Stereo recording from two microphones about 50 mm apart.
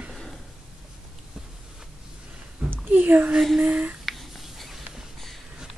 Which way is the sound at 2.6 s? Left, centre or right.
Right.